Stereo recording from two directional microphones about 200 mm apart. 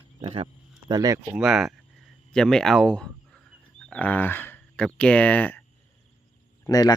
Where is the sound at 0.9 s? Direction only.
20° right (ahead or behind).